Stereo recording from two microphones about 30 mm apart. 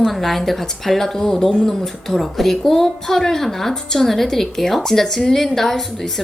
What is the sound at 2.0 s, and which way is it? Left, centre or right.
A woman's voice, centre.